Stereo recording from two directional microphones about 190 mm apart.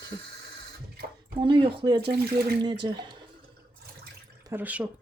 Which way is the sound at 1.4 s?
25° right (ahead or behind).